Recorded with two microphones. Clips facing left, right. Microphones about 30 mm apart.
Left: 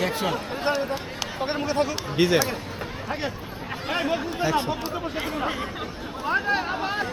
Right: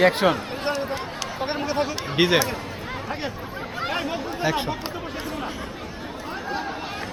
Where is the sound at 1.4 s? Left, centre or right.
Centre.